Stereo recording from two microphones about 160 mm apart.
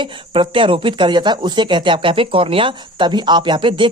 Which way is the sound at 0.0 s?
30° right (ahead or behind).